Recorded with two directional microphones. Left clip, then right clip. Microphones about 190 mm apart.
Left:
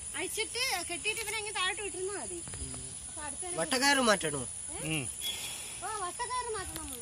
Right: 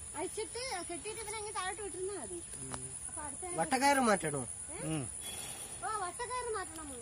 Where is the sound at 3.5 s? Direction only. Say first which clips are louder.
Left 1 dB; 55° right (ahead or behind).